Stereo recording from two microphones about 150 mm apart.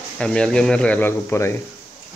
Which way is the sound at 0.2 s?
5° left (ahead or behind).